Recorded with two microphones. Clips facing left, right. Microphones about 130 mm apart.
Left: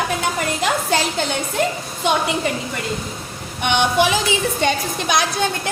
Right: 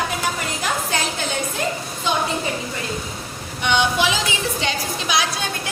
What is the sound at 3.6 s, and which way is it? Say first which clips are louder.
Speech: left 2 dB; 55° left (ahead or behind).